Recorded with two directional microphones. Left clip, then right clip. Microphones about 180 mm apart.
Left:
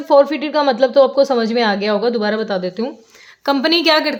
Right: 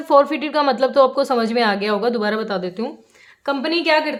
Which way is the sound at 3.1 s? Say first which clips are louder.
Left 7 dB; 40° left (ahead or behind).